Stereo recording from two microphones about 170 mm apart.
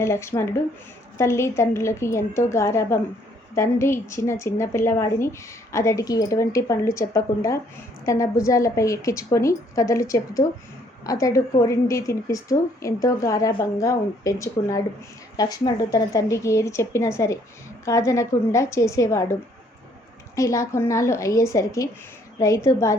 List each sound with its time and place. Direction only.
0.0 s a woman's voice: 15° left (ahead or behind)